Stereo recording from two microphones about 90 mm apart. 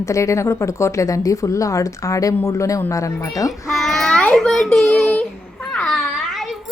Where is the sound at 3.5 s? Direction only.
Centre (ahead or behind).